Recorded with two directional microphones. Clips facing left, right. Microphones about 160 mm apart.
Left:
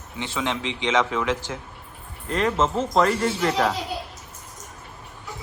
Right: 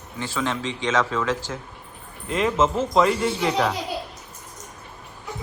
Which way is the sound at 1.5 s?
5° left (ahead or behind).